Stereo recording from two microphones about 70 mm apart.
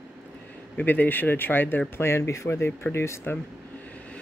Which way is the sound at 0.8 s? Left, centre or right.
Left.